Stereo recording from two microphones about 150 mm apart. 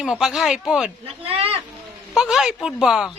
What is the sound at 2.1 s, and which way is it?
Speech, 5° right (ahead or behind).